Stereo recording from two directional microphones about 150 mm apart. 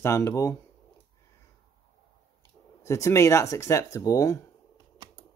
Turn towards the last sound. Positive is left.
turn(degrees=20)  # may be behind; listen again after turning